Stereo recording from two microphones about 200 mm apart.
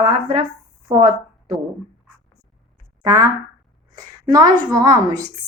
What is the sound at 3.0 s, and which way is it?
A woman's voice, 15° right (ahead or behind).